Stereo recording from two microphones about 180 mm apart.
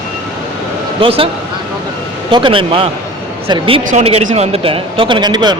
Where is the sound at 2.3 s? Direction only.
30° right (ahead or behind).